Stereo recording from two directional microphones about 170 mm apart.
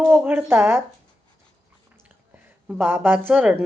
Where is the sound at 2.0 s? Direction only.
10° right (ahead or behind).